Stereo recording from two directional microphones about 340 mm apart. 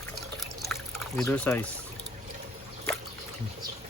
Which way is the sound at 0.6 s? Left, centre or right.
Centre.